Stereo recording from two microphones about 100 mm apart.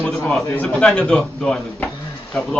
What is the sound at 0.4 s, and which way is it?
A man's voice, 15° left (ahead or behind).